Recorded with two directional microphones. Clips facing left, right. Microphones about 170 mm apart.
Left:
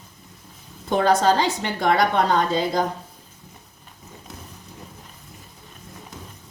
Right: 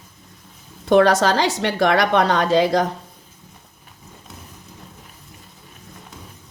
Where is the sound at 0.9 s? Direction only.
75° right (ahead or behind).